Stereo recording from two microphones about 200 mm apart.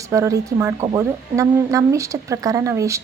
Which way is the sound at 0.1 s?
15° right (ahead or behind).